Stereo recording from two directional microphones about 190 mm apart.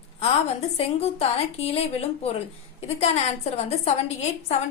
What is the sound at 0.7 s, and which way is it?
A woman's voice, 35° left (ahead or behind).